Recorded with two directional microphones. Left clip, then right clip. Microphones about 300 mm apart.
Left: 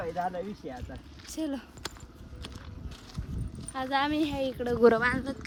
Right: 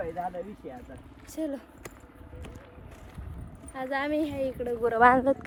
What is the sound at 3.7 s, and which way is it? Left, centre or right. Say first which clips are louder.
A woman's voice: left 1 dB; centre.